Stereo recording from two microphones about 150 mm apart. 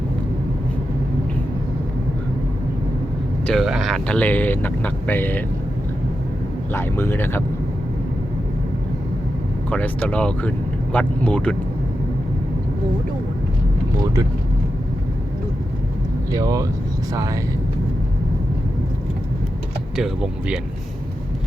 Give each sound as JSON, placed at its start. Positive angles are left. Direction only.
{"t": 3.4, "sound": "speech", "side_deg": 0}
{"t": 6.7, "sound": "speech", "side_deg": 15}
{"t": 9.6, "sound": "speech", "side_deg": 10}
{"t": 16.3, "sound": "speech", "side_deg": -25}
{"t": 20.0, "sound": "speech", "side_deg": -5}